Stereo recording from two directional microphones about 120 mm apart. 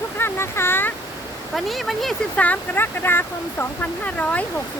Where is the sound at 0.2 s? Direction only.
20° left (ahead or behind).